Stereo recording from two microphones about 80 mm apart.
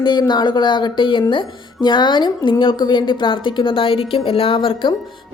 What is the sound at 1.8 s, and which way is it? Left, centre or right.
A woman's voice, left.